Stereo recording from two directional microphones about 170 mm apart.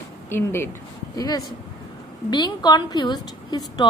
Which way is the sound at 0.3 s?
15° left (ahead or behind).